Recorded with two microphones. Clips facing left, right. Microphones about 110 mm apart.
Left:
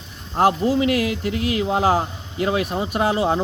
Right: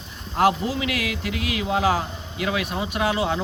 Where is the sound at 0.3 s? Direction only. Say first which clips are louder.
Left 3 dB; 35° left (ahead or behind).